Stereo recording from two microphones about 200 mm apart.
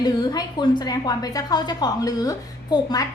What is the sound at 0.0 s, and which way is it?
A woman's voice, 20° left (ahead or behind).